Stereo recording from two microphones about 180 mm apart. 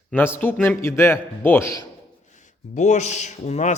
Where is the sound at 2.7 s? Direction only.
40° left (ahead or behind).